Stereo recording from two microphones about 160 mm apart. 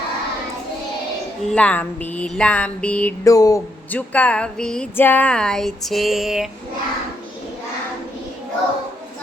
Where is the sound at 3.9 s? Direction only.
10° left (ahead or behind).